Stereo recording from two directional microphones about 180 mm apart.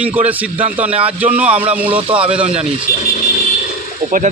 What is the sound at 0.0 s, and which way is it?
Speech, 10° right (ahead or behind).